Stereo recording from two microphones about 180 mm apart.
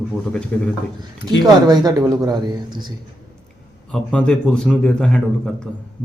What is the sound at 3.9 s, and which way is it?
A man's voice, 5° left (ahead or behind).